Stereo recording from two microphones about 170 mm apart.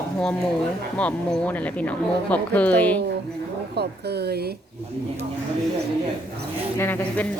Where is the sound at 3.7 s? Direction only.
70° right (ahead or behind).